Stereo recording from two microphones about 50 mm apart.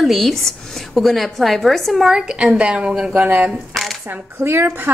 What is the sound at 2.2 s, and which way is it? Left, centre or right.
Speech, centre.